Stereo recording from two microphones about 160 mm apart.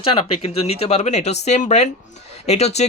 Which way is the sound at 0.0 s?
35° left (ahead or behind).